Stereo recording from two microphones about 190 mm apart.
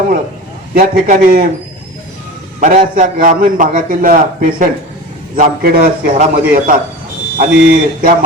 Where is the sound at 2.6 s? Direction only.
45° right (ahead or behind).